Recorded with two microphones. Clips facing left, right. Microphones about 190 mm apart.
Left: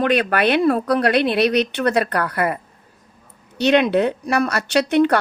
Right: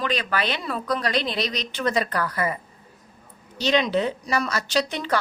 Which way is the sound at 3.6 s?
60° left (ahead or behind).